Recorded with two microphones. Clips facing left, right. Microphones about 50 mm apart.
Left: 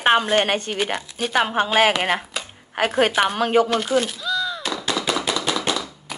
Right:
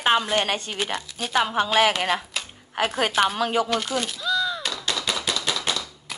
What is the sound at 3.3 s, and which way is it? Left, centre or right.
Speech, left.